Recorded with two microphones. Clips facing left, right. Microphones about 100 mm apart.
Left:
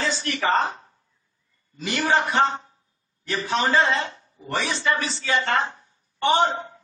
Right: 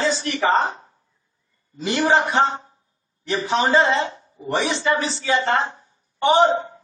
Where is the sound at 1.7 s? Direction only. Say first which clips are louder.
Right 4 dB; 25° right (ahead or behind).